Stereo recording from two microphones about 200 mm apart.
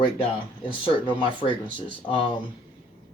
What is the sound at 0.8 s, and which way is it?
Speech, 25° left (ahead or behind).